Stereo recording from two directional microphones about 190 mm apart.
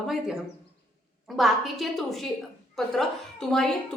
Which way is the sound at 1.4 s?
Centre (ahead or behind).